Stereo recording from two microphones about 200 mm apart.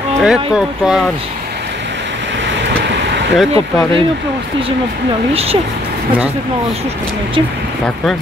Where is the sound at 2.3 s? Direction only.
65° right (ahead or behind).